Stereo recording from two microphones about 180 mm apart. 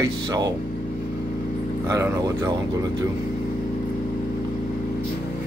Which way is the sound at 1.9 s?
15° right (ahead or behind).